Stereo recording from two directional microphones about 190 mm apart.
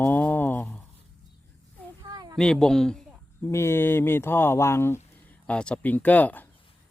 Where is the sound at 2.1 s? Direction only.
20° right (ahead or behind).